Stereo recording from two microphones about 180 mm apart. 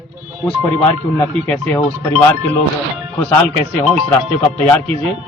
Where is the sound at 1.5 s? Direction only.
5° left (ahead or behind).